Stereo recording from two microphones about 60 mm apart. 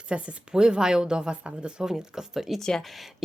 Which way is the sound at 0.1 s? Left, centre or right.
Centre.